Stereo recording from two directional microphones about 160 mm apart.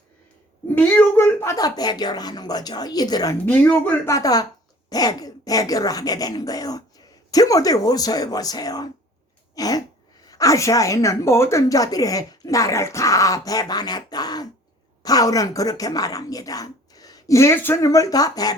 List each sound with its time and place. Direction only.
0.8 s speech: 10° left (ahead or behind)
3.4 s a woman's voice: 10° left (ahead or behind)